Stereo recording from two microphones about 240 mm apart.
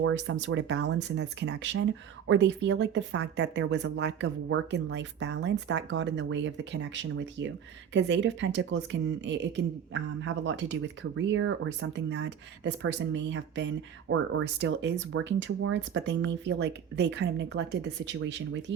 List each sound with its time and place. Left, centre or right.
0.0 s speech: right